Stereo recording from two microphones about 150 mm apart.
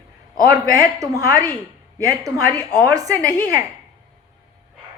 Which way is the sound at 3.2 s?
10° left (ahead or behind).